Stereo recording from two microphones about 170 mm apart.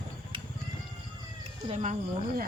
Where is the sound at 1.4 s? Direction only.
40° right (ahead or behind).